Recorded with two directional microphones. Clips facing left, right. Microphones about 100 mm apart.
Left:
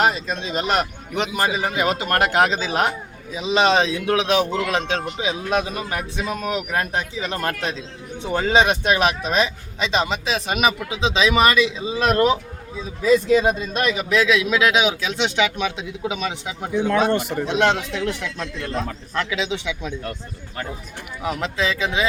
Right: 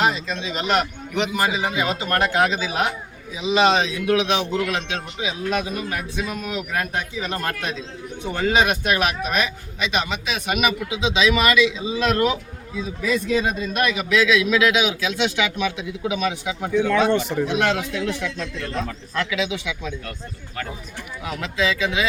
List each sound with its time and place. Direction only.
0.0 s a man's voice: 40° left (ahead or behind); by 17.1 s 25° left (ahead or behind)
17.1 s speech: 5° left (ahead or behind)
17.4 s a man's voice: 30° left (ahead or behind)
19.1 s a man's voice: 30° left (ahead or behind)
21.6 s a man's voice: 25° left (ahead or behind)